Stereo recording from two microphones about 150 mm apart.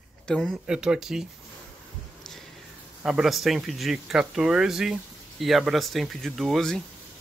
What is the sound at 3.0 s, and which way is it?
Speech, centre (ahead or behind).